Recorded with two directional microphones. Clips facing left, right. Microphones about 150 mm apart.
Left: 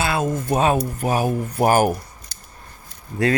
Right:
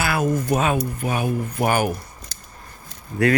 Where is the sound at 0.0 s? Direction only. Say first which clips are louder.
Right 1 dB; 25° left (ahead or behind); by 2.0 s 40° left (ahead or behind).